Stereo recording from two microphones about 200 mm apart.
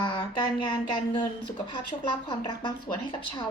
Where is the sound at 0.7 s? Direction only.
20° left (ahead or behind).